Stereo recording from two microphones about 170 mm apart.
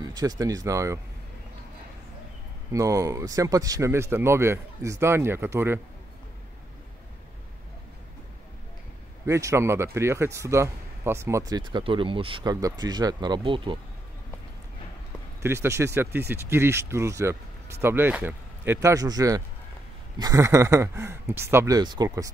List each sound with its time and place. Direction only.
0.0 s speech: 25° right (ahead or behind)
2.7 s speech: 20° right (ahead or behind)
9.2 s speech: 15° right (ahead or behind)
15.4 s speech: 15° right (ahead or behind)